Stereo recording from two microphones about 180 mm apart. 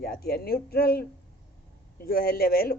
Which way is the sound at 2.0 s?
55° left (ahead or behind).